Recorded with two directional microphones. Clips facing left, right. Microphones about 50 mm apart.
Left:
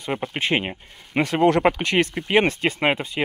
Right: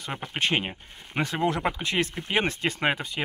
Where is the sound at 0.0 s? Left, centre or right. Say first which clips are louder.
Left 4 dB; left.